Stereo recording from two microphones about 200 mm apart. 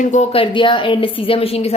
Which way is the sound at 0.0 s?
35° left (ahead or behind).